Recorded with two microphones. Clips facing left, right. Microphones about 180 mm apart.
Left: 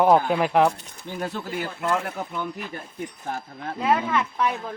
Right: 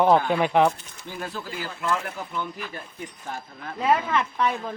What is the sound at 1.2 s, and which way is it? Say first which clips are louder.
Speech: left 4 dB; 45° left (ahead or behind).